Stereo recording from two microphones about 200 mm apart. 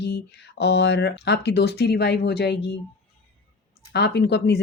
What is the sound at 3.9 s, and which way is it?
Speech, 55° left (ahead or behind).